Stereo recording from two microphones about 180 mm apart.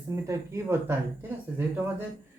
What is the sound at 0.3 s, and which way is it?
Speech, 15° right (ahead or behind).